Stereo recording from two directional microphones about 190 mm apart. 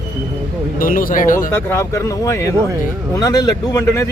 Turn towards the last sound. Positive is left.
turn(degrees=15)  # may be behind; listen again after turning